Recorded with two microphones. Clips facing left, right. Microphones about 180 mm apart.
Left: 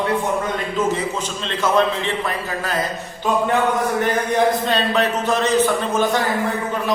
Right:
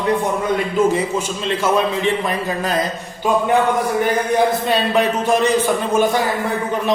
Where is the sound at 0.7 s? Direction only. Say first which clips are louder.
Right 4 dB; 10° right (ahead or behind).